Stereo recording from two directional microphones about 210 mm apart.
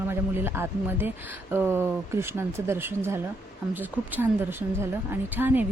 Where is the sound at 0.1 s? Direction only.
10° right (ahead or behind).